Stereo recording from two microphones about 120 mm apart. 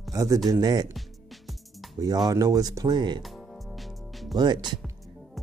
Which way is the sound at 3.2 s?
Centre (ahead or behind).